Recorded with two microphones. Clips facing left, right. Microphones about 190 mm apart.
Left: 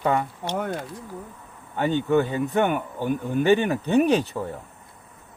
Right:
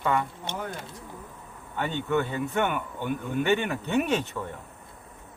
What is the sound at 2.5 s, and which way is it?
Speech, 35° left (ahead or behind).